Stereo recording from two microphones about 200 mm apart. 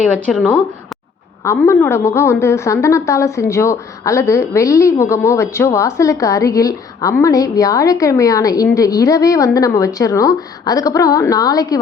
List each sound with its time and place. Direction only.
0.3 s a woman's voice: 5° left (ahead or behind)